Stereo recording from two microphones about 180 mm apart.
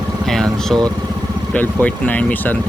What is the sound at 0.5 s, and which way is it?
Speech, centre (ahead or behind).